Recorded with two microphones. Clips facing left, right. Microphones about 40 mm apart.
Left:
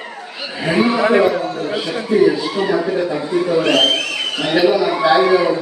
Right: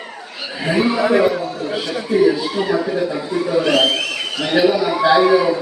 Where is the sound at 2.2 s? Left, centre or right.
Centre.